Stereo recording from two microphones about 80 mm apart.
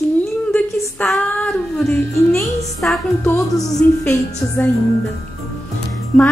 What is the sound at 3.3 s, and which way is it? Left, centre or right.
Speech, left.